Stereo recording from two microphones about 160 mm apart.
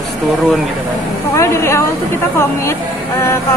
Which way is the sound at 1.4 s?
15° left (ahead or behind).